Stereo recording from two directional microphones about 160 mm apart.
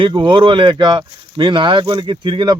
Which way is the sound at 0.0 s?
30° right (ahead or behind).